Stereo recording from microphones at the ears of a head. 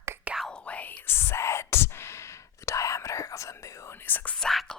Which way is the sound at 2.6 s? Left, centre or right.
Left.